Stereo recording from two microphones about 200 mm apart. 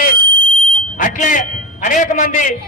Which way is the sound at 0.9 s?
40° left (ahead or behind).